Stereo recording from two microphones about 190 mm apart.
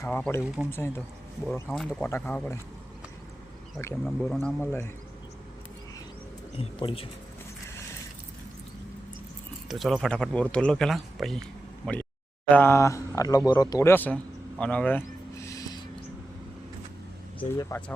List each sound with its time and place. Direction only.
0.0 s speech: 10° left (ahead or behind)
0.4 s speech: 5° right (ahead or behind)
0.7 s speech: 10° left (ahead or behind)
4.0 s speech: centre (ahead or behind)
6.6 s speech: 30° left (ahead or behind)
9.6 s speech: centre (ahead or behind)
12.5 s speech: 10° left (ahead or behind)
14.6 s a sound: 5° left (ahead or behind)
17.6 s speech: 10° left (ahead or behind)